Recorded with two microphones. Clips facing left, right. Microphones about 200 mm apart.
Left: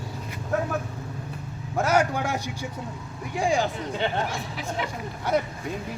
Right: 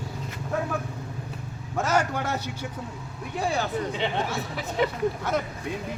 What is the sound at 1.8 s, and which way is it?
Vehicle, 10° left (ahead or behind).